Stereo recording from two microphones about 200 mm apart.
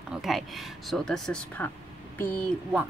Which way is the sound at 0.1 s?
Centre (ahead or behind).